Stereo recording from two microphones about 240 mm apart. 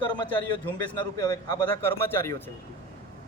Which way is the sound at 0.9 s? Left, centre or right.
Centre.